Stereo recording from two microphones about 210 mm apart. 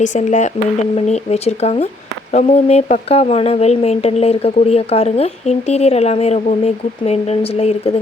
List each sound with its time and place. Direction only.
0.0 s speech: 35° left (ahead or behind)